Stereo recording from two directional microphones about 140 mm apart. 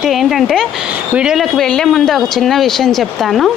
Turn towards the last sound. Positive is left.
turn(degrees=0)  # may be behind; listen again after turning